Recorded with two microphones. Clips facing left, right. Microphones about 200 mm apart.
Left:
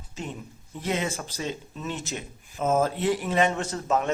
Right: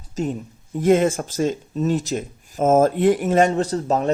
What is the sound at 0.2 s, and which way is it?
Speech, 40° right (ahead or behind).